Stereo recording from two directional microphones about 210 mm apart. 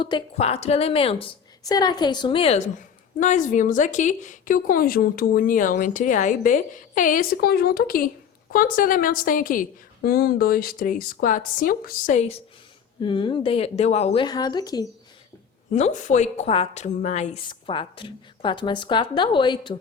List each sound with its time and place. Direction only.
0.0 s a woman's voice: 25° left (ahead or behind)
13.0 s a woman's voice: 20° left (ahead or behind)
15.7 s a woman's voice: 35° left (ahead or behind)
17.5 s a woman's voice: 25° left (ahead or behind)